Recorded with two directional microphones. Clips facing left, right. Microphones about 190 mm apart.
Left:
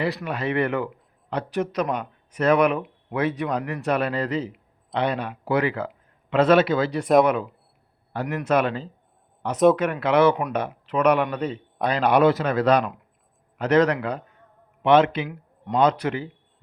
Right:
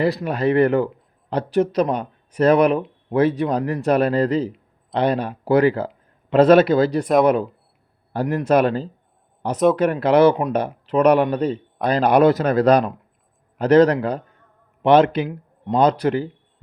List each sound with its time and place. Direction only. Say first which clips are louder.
0.0 s speech: right 6 dB; 35° right (ahead or behind)